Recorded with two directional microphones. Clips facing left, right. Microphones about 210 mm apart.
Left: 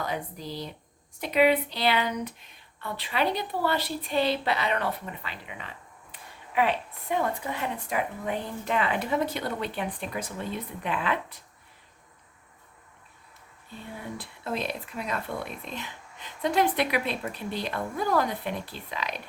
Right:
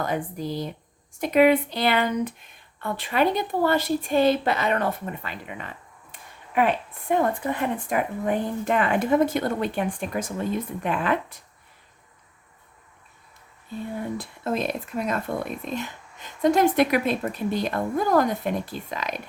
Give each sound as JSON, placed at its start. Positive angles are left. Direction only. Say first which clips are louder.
{"t": 0.0, "sound": "speech", "louder": "right 6 dB", "side_deg": -50}
{"t": 14.2, "sound": "speech", "louder": "right 3 dB", "side_deg": -45}